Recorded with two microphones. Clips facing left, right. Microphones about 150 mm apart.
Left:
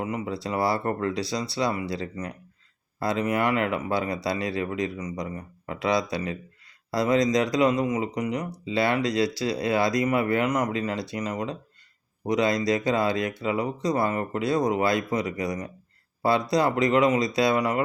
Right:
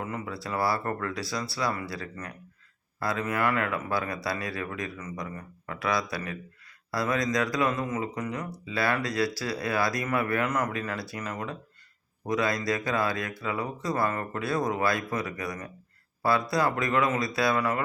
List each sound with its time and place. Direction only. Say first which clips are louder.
0.0 s speech: left 5 dB; 15° left (ahead or behind)